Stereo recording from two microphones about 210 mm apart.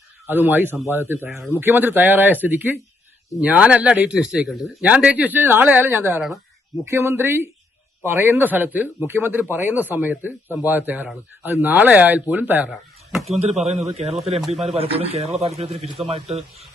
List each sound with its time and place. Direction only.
0.3 s a man's voice: 10° right (ahead or behind)
6.8 s a man's voice: 10° right (ahead or behind)
13.9 s speech: 30° right (ahead or behind)
14.4 s a man's voice: centre (ahead or behind)
14.8 s speech: 25° right (ahead or behind)